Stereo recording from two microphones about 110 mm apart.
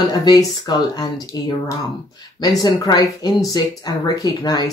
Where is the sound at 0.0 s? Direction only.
40° left (ahead or behind).